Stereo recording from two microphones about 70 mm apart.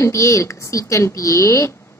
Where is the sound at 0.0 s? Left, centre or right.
Left.